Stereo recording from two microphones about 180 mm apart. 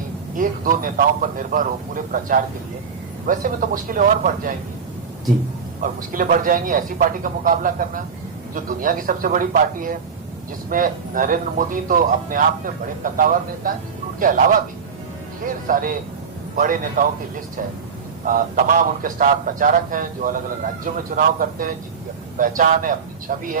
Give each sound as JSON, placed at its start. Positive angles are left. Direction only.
{"t": 0.3, "sound": "speech", "side_deg": -50}
{"t": 5.8, "sound": "speech", "side_deg": -50}
{"t": 15.4, "sound": "speech", "side_deg": -50}
{"t": 18.3, "sound": "speech", "side_deg": -50}